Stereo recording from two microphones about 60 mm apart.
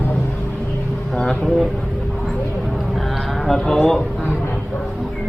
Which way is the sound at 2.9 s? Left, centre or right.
Centre.